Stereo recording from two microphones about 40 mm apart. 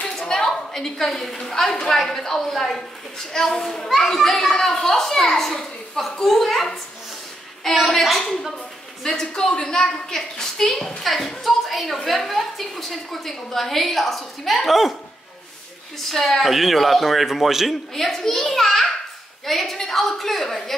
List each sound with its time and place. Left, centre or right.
0.0 s a sound: centre
0.5 s a woman's voice: centre
9.0 s a woman's voice: centre
16.1 s a woman's voice: centre
17.9 s a woman's voice: centre